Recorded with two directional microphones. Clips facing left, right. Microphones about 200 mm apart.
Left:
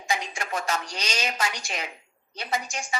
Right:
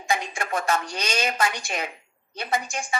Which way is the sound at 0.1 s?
55° right (ahead or behind).